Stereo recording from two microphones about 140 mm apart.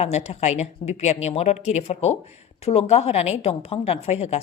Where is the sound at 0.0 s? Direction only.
50° left (ahead or behind).